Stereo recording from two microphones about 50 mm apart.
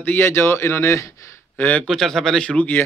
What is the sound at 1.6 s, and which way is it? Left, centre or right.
Speech, left.